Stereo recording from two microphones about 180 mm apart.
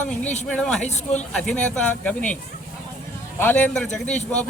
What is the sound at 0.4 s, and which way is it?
Speech, 5° left (ahead or behind).